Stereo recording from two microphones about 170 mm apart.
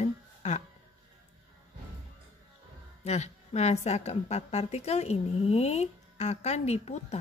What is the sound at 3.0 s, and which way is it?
A woman's voice, 40° left (ahead or behind).